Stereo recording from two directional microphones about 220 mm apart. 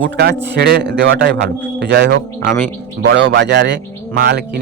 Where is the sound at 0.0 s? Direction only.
50° right (ahead or behind).